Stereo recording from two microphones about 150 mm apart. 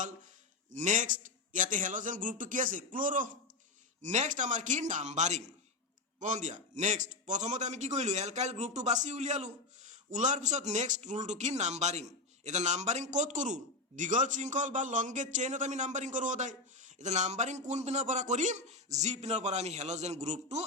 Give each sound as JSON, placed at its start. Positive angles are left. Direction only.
{"t": 0.7, "sound": "a man's voice", "side_deg": -55}
{"t": 4.0, "sound": "a man's voice", "side_deg": -50}